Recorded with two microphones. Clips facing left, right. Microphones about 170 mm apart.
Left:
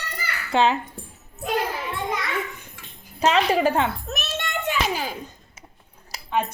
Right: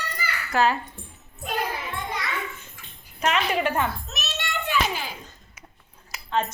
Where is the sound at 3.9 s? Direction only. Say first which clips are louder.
Left 4 dB; 55° left (ahead or behind).